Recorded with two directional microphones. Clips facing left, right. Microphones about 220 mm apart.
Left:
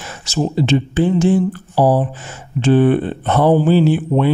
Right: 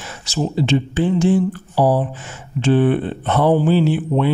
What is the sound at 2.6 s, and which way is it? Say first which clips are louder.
Speech: left 3 dB; 45° left (ahead or behind).